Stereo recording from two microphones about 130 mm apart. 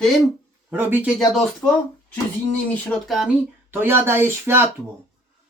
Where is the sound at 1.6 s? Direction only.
15° left (ahead or behind).